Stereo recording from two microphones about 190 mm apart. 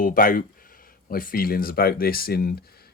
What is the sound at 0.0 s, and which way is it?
Speech, 50° left (ahead or behind).